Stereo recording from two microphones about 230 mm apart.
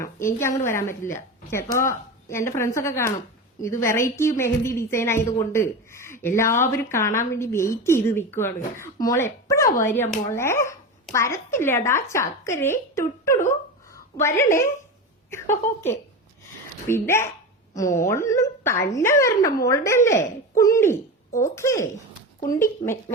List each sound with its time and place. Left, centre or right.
0.0 s a woman's voice: centre